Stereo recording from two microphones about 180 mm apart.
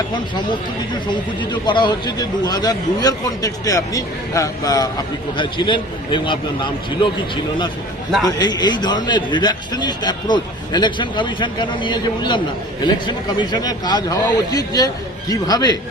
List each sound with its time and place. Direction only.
1.1 s a man's voice: 25° left (ahead or behind)
8.2 s a man's voice: 20° left (ahead or behind)